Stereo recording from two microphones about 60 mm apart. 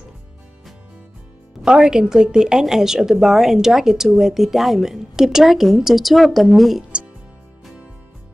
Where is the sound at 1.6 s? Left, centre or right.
Centre.